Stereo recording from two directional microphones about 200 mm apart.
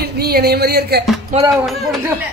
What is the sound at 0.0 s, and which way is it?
Speech, 55° right (ahead or behind).